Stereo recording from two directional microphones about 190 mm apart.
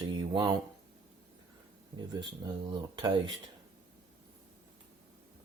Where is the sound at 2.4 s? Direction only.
20° right (ahead or behind).